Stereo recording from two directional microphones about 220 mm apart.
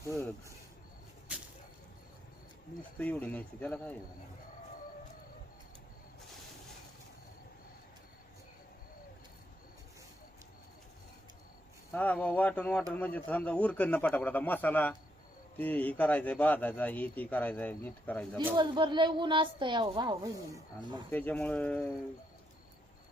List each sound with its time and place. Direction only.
3.0 s speech: 5° left (ahead or behind)
11.9 s speech: 5° left (ahead or behind)
18.5 s speech: 20° right (ahead or behind)
21.1 s speech: 5° left (ahead or behind)